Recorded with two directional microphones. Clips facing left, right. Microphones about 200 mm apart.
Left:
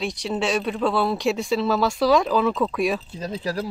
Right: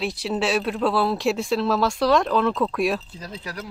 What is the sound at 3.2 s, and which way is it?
Speech, 25° left (ahead or behind).